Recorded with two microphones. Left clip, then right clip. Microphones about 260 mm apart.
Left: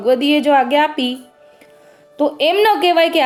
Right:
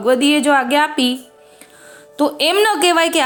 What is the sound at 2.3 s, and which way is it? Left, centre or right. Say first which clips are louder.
Speech: left 2 dB; centre.